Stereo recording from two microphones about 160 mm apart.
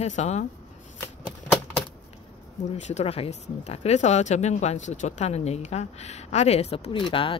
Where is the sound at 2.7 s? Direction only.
45° left (ahead or behind).